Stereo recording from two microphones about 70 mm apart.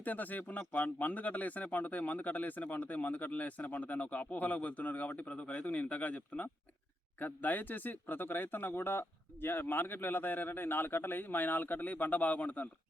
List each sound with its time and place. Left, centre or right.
0.0 s speech: left